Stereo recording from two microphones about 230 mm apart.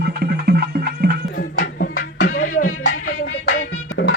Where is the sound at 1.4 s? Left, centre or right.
Left.